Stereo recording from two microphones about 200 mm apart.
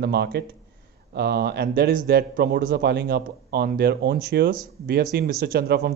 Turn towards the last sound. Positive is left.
turn(degrees=-50)  # may be behind; listen again after turning